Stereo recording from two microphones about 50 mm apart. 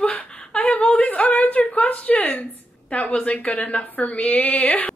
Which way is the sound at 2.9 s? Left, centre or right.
Left.